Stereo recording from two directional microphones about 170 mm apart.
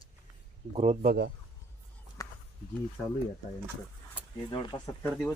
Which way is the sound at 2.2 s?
20° left (ahead or behind).